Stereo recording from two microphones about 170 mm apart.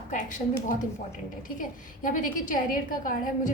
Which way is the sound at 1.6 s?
50° left (ahead or behind).